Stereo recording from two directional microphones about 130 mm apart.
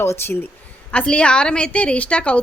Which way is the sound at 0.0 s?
20° left (ahead or behind).